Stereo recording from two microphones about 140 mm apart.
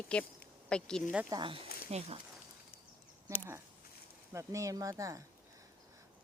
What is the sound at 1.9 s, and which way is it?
Speech, 45° right (ahead or behind).